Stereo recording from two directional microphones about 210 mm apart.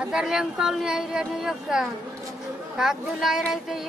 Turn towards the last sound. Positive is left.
turn(degrees=0)  # may be behind; listen again after turning